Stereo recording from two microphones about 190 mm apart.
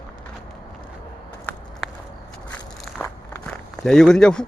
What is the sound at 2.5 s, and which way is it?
Walk, 10° left (ahead or behind).